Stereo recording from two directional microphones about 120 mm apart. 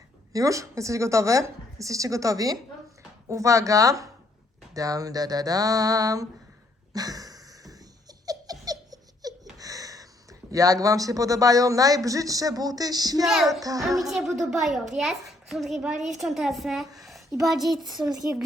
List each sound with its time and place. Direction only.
0.3 s speech: 25° right (ahead or behind)
4.7 s a sound: 30° right (ahead or behind)
6.9 s laughter: 30° right (ahead or behind)
10.5 s speech: 30° right (ahead or behind)
13.2 s a child's voice: centre (ahead or behind)
13.6 s speech: 30° right (ahead or behind)
14.5 s a child's voice: centre (ahead or behind)
17.0 s a sound: centre (ahead or behind)
17.4 s a child's voice: centre (ahead or behind)
18.0 s a sound: 30° right (ahead or behind)